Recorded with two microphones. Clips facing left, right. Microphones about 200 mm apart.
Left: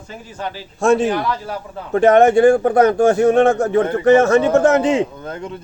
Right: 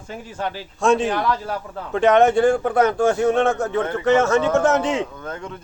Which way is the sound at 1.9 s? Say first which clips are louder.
Left 4 dB; 45° left (ahead or behind).